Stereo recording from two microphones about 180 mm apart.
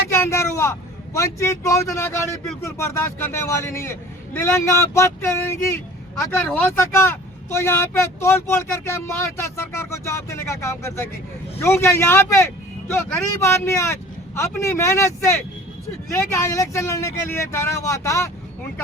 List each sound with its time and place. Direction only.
0.1 s speech: 15° left (ahead or behind)
16.1 s speech: 15° left (ahead or behind)